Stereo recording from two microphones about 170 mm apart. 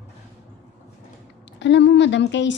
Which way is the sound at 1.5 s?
90° left.